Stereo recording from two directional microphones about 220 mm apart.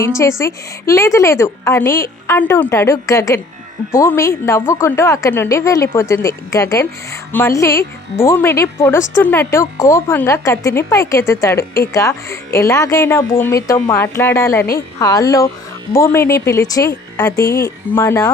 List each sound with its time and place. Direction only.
0.2 s a woman's voice: 15° left (ahead or behind)